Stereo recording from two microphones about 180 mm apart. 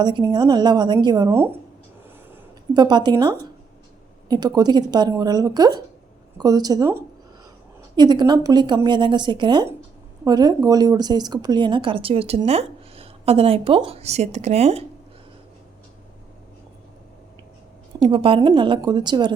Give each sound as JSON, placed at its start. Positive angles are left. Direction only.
{"t": 0.0, "sound": "a woman's voice", "side_deg": -25}
{"t": 2.7, "sound": "a woman's voice", "side_deg": -25}
{"t": 18.1, "sound": "a woman's voice", "side_deg": -30}